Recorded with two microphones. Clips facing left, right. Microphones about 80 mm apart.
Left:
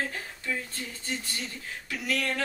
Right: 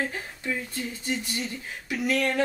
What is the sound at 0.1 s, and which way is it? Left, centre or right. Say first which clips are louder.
A woman's voice: right 2 dB; centre.